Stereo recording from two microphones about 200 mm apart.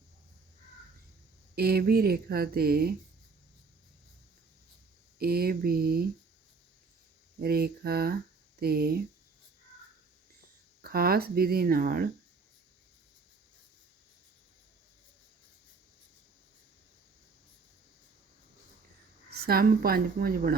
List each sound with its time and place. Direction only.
1.5 s speech: 50° right (ahead or behind)
5.2 s speech: 50° right (ahead or behind)
7.3 s speech: 50° right (ahead or behind)
10.8 s speech: 50° right (ahead or behind)
19.3 s speech: 50° right (ahead or behind)